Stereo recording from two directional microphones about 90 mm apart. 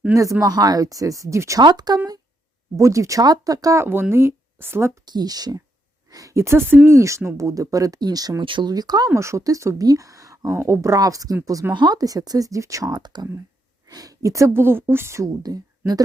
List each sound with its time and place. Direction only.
0.1 s speech: 35° right (ahead or behind)
1.6 s speech: 50° right (ahead or behind)
2.7 s speech: 35° right (ahead or behind)
4.1 s speech: 30° right (ahead or behind)
5.0 s speech: 50° right (ahead or behind)
8.4 s speech: 65° right (ahead or behind)
8.7 s speech: 50° right (ahead or behind)
9.0 s speech: 35° right (ahead or behind)
11.7 s speech: 55° right (ahead or behind); by 15.3 s 30° right (ahead or behind)